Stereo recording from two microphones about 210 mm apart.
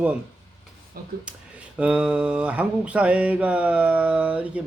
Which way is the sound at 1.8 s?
5° right (ahead or behind).